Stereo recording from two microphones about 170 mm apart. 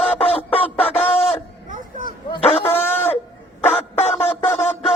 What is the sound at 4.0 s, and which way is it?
Music, 40° left (ahead or behind).